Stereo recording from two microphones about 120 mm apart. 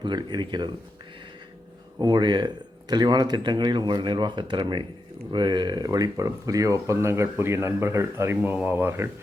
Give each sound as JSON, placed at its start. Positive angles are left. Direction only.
{"t": 0.0, "sound": "speech", "side_deg": -40}
{"t": 2.0, "sound": "speech", "side_deg": -35}